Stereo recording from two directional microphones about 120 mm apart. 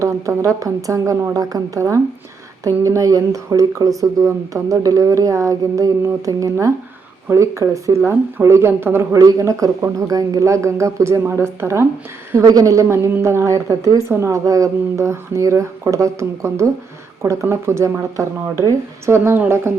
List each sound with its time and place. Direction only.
0.0 s speech: 25° right (ahead or behind)